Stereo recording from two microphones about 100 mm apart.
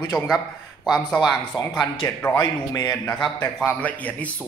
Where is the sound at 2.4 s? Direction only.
40° left (ahead or behind).